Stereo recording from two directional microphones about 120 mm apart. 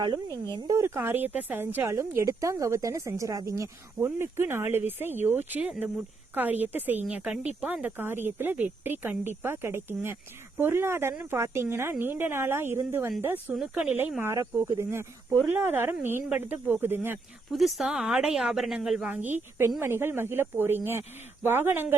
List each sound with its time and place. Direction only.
0.0 s a woman's voice: 30° right (ahead or behind); by 13.6 s 15° right (ahead or behind)
13.6 s speech: 5° right (ahead or behind)
14.2 s a woman's voice: 20° right (ahead or behind)
17.5 s speech: centre (ahead or behind)
19.0 s a woman's voice: 15° right (ahead or behind)